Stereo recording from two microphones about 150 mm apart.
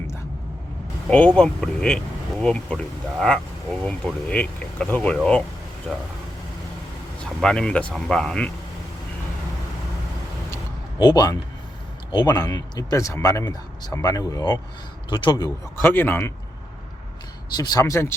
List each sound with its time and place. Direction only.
1.1 s speech: 5° left (ahead or behind)
7.4 s speech: 5° left (ahead or behind)
10.5 s a sound: 25° left (ahead or behind)
12.1 s a man's voice: 25° left (ahead or behind)
15.8 s speech: 15° left (ahead or behind)
17.5 s a man's voice: 25° left (ahead or behind)